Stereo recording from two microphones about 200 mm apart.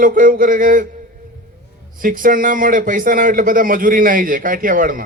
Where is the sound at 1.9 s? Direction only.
45° right (ahead or behind).